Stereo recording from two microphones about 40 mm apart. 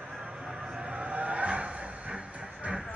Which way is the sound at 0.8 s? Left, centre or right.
Right.